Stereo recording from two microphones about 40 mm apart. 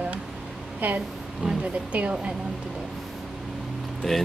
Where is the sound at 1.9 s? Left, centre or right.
Right.